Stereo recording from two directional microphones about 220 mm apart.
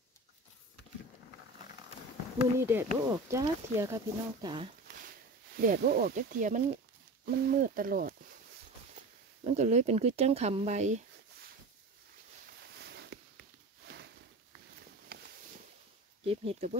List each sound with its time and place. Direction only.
2.6 s speech: 10° right (ahead or behind)
4.8 s a sound: 40° right (ahead or behind)
5.7 s speech: 45° right (ahead or behind)
9.4 s speech: 30° right (ahead or behind)
12.7 s a sound: 50° right (ahead or behind)
16.3 s speech: 25° right (ahead or behind)